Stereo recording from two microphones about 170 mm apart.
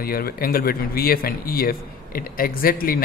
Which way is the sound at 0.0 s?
60° left (ahead or behind).